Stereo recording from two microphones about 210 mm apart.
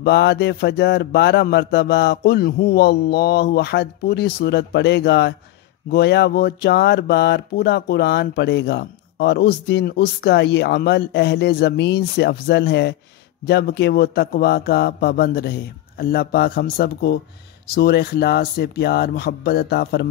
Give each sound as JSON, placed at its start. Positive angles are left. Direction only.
{"t": 0.0, "sound": "speech", "side_deg": 55}